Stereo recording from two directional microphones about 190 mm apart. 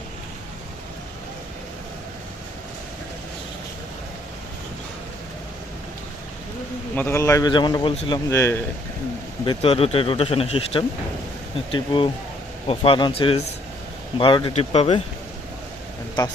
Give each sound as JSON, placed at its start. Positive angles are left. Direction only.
{"t": 6.9, "sound": "a man's voice", "side_deg": 10}
{"t": 9.4, "sound": "speech", "side_deg": 30}